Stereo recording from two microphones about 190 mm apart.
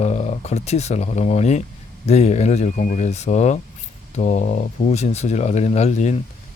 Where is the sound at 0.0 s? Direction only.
35° left (ahead or behind).